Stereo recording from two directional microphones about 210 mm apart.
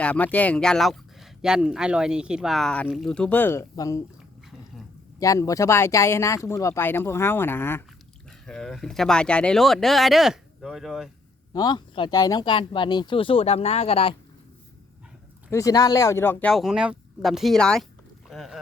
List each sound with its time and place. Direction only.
0.0 s speech: 5° left (ahead or behind)
5.2 s speech: 15° left (ahead or behind); by 11.1 s centre (ahead or behind)
11.5 s speech: 20° left (ahead or behind)
15.4 s speech: 15° left (ahead or behind)
18.3 s boat: centre (ahead or behind)